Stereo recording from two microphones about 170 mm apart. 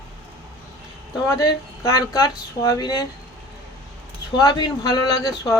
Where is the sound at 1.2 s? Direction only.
20° left (ahead or behind).